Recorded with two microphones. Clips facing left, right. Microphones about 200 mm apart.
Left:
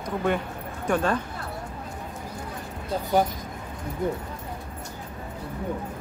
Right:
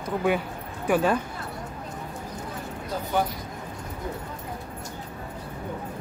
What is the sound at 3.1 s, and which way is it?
Speech, 35° left (ahead or behind).